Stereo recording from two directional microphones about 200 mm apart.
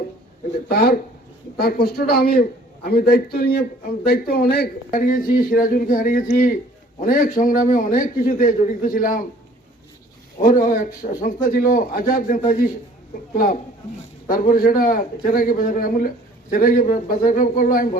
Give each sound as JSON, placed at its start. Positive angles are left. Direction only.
{"t": 0.7, "sound": "a man's voice", "side_deg": 50}
{"t": 10.5, "sound": "a man's voice", "side_deg": 40}